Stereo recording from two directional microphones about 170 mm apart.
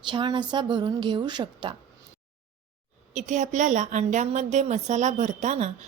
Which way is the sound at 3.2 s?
45° right (ahead or behind).